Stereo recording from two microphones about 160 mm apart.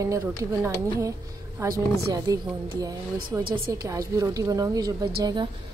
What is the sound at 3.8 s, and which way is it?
Speech, 20° right (ahead or behind).